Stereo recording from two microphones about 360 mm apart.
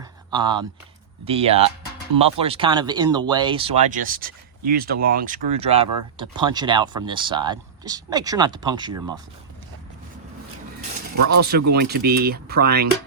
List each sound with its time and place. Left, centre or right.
0.0 s a sound: centre
1.2 s speech: centre
11.3 s speech: right